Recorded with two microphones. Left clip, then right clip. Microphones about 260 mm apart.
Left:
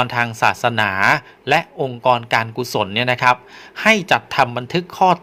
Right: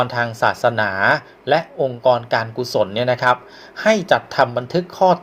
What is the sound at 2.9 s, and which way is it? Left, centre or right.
Speech, left.